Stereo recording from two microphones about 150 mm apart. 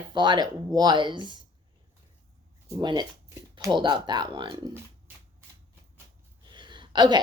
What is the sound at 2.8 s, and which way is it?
A woman's voice, 30° right (ahead or behind).